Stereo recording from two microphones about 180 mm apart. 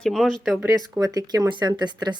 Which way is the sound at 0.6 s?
20° right (ahead or behind).